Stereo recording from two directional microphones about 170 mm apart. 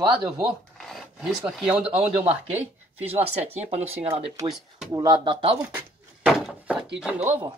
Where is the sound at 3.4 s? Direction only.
10° right (ahead or behind).